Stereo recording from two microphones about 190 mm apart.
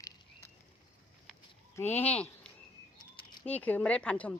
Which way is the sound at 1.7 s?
10° left (ahead or behind).